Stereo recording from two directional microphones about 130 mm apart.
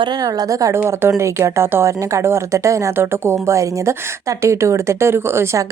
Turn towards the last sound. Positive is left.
turn(degrees=-20)  # may be behind; listen again after turning